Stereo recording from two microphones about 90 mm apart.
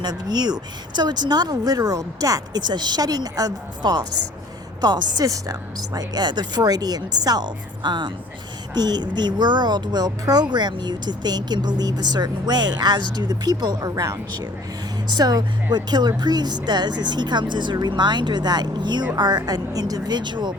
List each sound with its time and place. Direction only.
0.0 s speech: 50° right (ahead or behind)